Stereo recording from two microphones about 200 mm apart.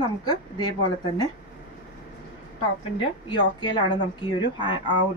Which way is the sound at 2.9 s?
25° left (ahead or behind).